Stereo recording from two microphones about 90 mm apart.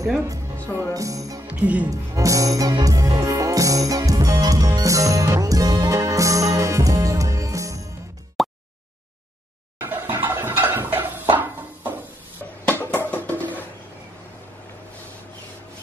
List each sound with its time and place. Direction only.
0.7 s speech: 35° right (ahead or behind)
1.5 s speech: 15° right (ahead or behind)
1.9 s speech: 40° right (ahead or behind)
5.9 s music: 35° right (ahead or behind)
8.4 s a sound: centre (ahead or behind)
9.8 s a sound: 25° right (ahead or behind)
12.6 s music: 20° left (ahead or behind)